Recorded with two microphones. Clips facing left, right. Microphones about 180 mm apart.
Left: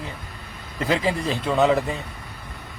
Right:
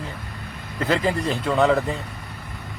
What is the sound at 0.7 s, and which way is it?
Speech, 5° left (ahead or behind).